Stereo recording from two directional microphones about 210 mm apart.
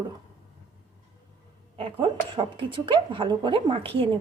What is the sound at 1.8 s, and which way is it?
A woman's voice, 25° right (ahead or behind).